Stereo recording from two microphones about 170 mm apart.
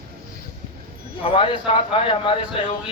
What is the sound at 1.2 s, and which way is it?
A man's voice, 30° left (ahead or behind).